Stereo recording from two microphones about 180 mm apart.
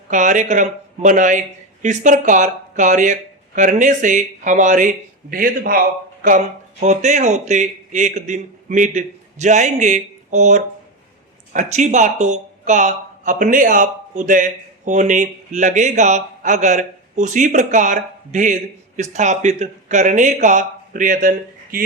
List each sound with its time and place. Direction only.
0.1 s speech: 45° right (ahead or behind)